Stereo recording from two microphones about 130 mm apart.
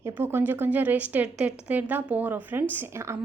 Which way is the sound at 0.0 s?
20° right (ahead or behind).